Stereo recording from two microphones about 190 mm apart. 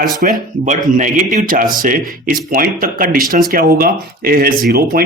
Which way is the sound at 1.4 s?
45° right (ahead or behind).